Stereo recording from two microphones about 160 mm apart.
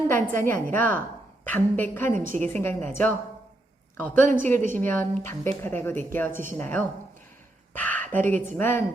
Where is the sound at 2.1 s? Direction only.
50° right (ahead or behind).